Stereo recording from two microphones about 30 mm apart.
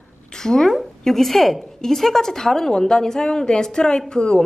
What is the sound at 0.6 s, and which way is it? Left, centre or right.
A woman's voice, centre.